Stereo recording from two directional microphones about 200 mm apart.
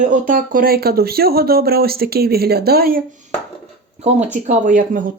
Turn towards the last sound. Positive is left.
turn(degrees=-40)  # may be behind; listen again after turning